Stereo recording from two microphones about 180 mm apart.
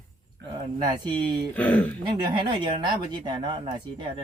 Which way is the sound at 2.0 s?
25° right (ahead or behind).